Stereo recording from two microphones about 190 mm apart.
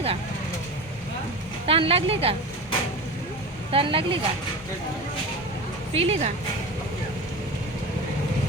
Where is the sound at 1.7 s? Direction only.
30° right (ahead or behind).